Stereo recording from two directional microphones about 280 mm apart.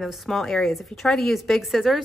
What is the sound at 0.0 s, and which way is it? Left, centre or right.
Speech, centre.